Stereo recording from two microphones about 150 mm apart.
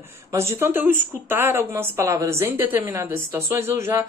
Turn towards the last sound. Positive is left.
turn(degrees=-20)  # may be behind; listen again after turning